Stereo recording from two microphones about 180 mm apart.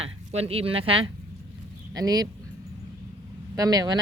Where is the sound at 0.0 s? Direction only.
35° right (ahead or behind).